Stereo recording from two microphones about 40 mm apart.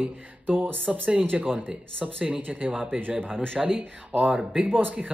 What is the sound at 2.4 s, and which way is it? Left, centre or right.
Speech, right.